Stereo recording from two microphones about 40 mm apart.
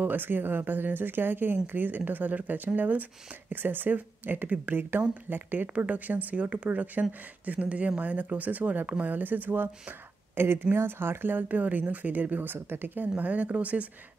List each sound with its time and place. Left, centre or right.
0.0 s speech: right
6.5 s speech: right
13.1 s speech: right